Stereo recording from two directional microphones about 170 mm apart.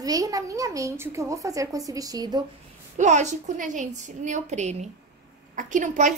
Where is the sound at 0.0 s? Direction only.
20° right (ahead or behind).